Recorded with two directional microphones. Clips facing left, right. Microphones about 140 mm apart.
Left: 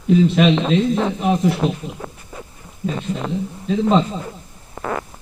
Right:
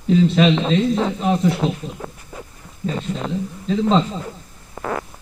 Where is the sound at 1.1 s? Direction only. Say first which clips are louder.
Left 1 dB; 15° left (ahead or behind).